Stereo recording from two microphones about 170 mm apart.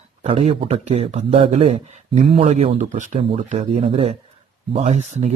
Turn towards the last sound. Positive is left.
turn(degrees=-40)  # may be behind; listen again after turning